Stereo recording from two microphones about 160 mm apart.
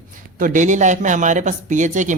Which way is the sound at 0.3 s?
55° right (ahead or behind).